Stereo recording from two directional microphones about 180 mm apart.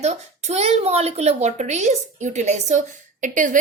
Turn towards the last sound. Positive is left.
turn(degrees=-45)  # may be behind; listen again after turning